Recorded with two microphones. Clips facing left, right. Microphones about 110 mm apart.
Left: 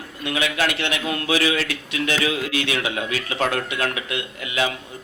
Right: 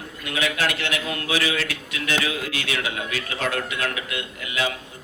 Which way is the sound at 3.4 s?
30° left (ahead or behind).